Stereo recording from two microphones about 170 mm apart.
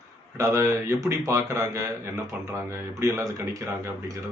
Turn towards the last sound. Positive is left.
turn(degrees=-20)  # may be behind; listen again after turning